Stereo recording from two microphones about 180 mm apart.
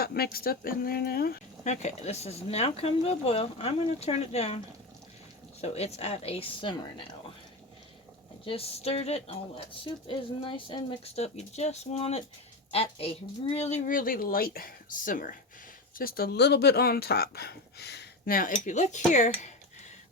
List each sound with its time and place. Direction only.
0.0 s speech: 60° left (ahead or behind)
1.6 s speech: 40° left (ahead or behind)
8.4 s speech: 35° left (ahead or behind); by 18.5 s 50° left (ahead or behind)
18.5 s speech: 40° left (ahead or behind)